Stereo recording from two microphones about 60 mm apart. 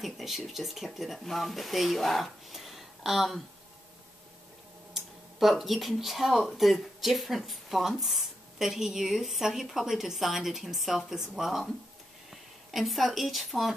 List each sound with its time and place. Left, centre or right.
0.0 s speech: centre
4.9 s speech: centre